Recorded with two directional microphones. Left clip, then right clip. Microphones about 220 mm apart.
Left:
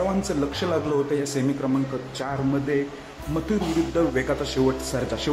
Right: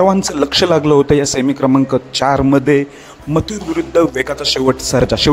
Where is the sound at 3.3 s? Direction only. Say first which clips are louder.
Right 8 dB; 40° right (ahead or behind).